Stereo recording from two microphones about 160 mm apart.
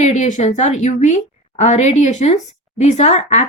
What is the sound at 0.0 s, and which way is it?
A woman's voice, 50° left (ahead or behind).